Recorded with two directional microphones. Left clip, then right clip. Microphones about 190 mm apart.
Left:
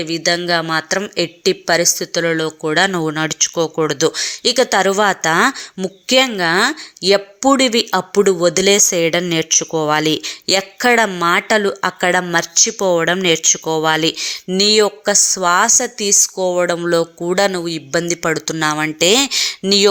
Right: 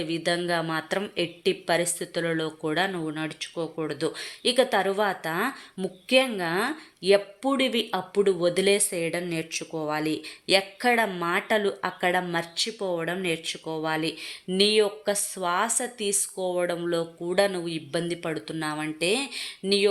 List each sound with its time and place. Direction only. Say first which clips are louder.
0.0 s speech: left 9 dB; 15° left (ahead or behind)